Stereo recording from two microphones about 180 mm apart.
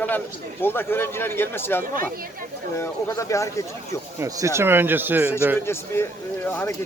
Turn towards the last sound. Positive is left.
turn(degrees=10)  # may be behind; listen again after turning